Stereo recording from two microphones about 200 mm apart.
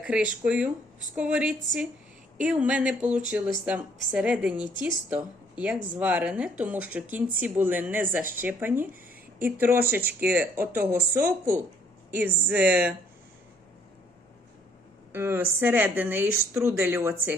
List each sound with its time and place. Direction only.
0.0 s speech: 5° right (ahead or behind)
10.0 s speech: 50° right (ahead or behind)
10.2 s speech: 10° right (ahead or behind)
15.1 s speech: 10° right (ahead or behind)